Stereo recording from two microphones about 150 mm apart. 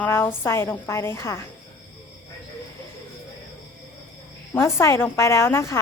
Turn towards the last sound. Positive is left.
turn(degrees=20)  # may be behind; listen again after turning